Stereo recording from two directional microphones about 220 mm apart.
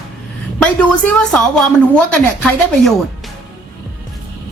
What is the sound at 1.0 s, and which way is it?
Speech, 5° left (ahead or behind).